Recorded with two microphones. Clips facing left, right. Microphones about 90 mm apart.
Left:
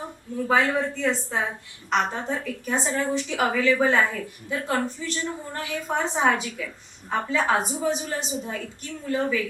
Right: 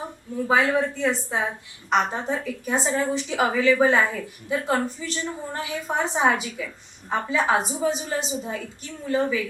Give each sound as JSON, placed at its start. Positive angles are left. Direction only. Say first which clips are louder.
{"t": 0.4, "sound": "a woman's voice", "louder": "right 1 dB", "side_deg": -10}